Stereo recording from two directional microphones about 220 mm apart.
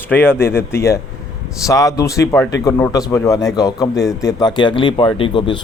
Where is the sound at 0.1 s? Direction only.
10° left (ahead or behind).